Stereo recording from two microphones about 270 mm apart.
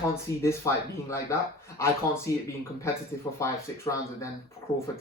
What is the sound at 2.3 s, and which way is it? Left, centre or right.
Speech, centre.